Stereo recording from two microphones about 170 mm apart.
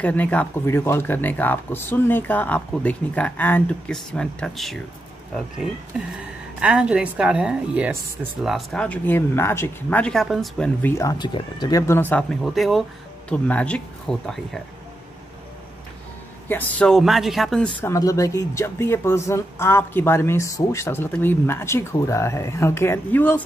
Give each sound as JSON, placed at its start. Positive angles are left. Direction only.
{"t": 0.0, "sound": "a woman's voice", "side_deg": 10}
{"t": 10.8, "sound": "speech", "side_deg": 15}
{"t": 11.9, "sound": "a woman's voice", "side_deg": 10}
{"t": 16.4, "sound": "a woman's voice", "side_deg": 10}
{"t": 17.7, "sound": "speech", "side_deg": 15}